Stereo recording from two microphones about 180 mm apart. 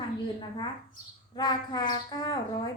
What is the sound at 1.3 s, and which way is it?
A woman's voice, 20° left (ahead or behind).